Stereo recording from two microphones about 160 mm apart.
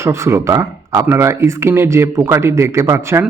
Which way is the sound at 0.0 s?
15° right (ahead or behind).